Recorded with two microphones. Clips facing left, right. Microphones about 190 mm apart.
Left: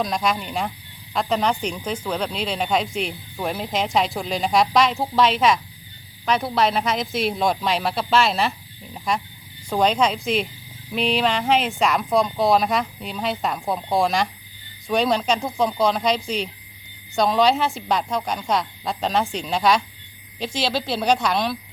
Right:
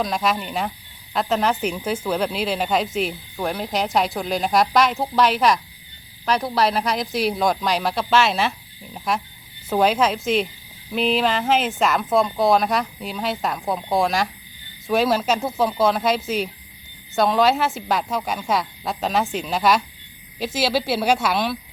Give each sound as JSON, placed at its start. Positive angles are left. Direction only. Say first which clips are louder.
{"t": 0.0, "sound": "speech", "louder": "right 1 dB", "side_deg": 0}